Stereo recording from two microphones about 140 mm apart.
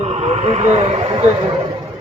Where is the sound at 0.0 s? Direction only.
50° right (ahead or behind).